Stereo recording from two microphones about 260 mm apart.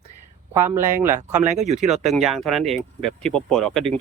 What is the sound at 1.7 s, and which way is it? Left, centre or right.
Speech, centre.